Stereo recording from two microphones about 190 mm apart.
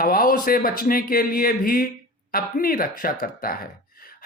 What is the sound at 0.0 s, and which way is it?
Speech, 50° left (ahead or behind).